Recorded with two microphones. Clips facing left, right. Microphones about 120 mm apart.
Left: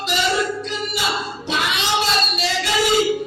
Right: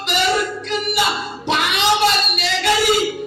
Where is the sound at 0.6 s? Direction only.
60° right (ahead or behind).